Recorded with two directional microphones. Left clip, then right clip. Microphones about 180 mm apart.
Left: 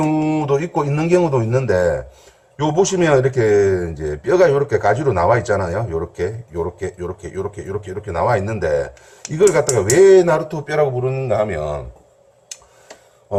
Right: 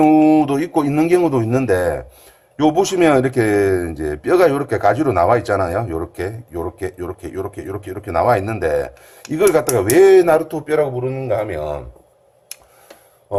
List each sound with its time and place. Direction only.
0.0 s a man's voice: 60° right (ahead or behind)
11.0 s a man's voice: 35° right (ahead or behind)